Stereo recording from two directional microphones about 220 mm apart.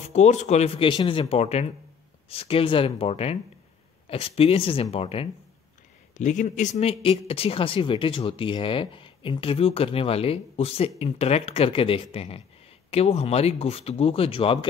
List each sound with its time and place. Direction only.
0.0 s speech: 30° left (ahead or behind)